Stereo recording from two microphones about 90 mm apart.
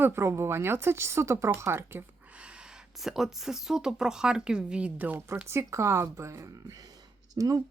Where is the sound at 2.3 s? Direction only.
10° right (ahead or behind).